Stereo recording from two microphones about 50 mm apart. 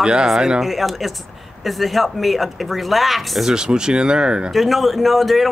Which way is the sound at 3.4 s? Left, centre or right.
Centre.